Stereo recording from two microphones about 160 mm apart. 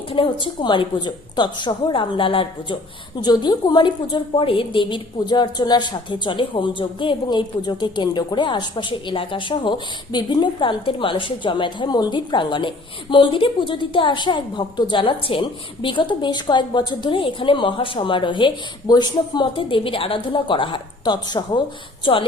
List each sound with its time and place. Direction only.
0.1 s a woman's voice: 35° left (ahead or behind)